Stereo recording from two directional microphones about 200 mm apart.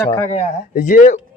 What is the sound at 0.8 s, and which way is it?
Speech, 40° left (ahead or behind).